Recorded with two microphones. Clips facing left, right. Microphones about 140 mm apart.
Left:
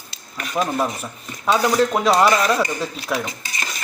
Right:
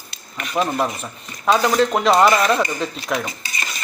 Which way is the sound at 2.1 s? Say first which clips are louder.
Right 2 dB; 5° right (ahead or behind).